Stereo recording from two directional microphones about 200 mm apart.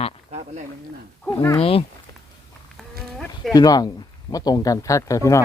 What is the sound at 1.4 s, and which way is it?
Speech, 15° left (ahead or behind).